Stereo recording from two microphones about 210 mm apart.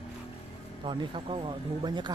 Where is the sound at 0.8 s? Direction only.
25° right (ahead or behind).